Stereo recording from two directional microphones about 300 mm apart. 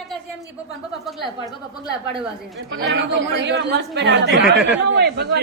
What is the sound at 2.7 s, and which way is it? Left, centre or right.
Speech, right.